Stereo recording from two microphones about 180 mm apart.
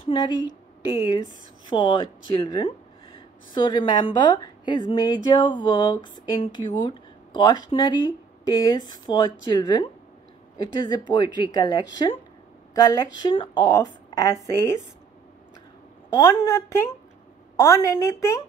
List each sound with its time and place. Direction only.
0.0 s a woman's voice: 25° left (ahead or behind)
16.1 s a woman's voice: 20° left (ahead or behind)